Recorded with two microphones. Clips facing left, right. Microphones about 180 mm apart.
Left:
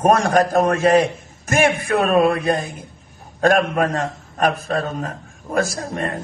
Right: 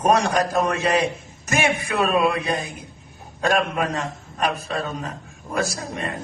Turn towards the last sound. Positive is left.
turn(degrees=50)  # may be behind; listen again after turning